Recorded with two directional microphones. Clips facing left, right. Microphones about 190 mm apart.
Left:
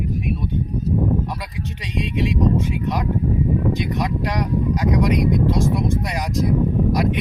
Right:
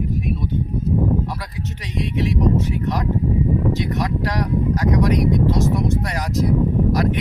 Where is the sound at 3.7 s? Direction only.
15° left (ahead or behind).